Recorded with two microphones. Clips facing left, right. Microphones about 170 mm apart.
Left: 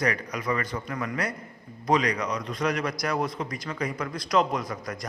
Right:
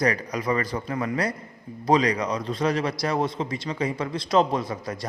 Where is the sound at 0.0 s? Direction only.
35° right (ahead or behind).